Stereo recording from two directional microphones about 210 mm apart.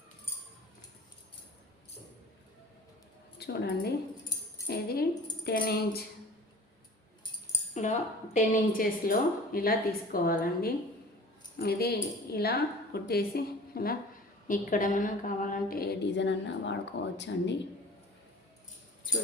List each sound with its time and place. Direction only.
3.3 s a woman's voice: 50° left (ahead or behind)
7.7 s a woman's voice: 35° left (ahead or behind); by 17.5 s 55° left (ahead or behind)